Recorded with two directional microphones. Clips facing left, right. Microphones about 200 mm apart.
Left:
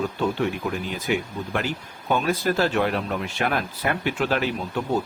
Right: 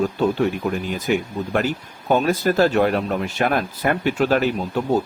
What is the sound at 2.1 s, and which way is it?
Speech, 40° right (ahead or behind).